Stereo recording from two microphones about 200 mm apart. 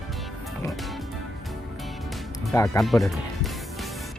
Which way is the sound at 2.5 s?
15° left (ahead or behind).